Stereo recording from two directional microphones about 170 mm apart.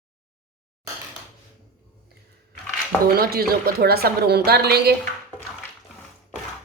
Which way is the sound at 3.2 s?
65° right (ahead or behind).